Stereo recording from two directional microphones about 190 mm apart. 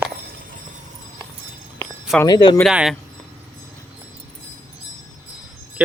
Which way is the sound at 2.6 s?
5° right (ahead or behind).